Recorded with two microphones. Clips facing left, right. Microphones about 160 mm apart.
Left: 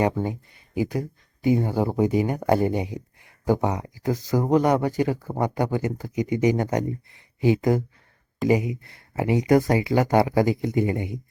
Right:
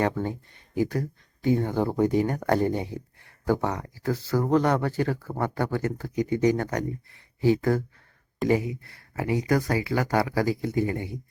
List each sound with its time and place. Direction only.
0.0 s speech: 15° left (ahead or behind)